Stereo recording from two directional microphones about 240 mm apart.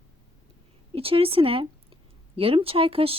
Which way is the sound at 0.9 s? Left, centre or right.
Right.